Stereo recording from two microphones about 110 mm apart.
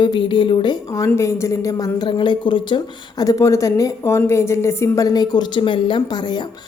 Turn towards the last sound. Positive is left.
turn(degrees=40)  # may be behind; listen again after turning